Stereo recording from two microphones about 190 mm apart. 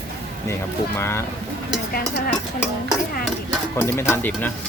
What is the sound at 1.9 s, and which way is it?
Speech, 50° left (ahead or behind).